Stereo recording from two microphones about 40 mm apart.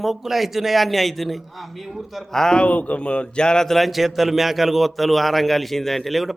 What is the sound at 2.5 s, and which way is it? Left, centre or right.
Speech, left.